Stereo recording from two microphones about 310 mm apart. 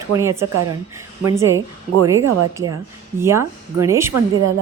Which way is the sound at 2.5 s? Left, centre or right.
Centre.